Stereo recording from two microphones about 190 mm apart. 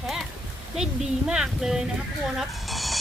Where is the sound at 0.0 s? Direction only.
Centre (ahead or behind).